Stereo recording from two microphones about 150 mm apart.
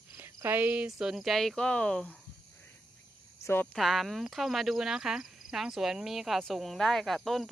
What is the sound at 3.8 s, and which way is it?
Speech, centre (ahead or behind).